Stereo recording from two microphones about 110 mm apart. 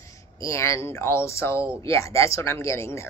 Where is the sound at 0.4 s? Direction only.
30° left (ahead or behind).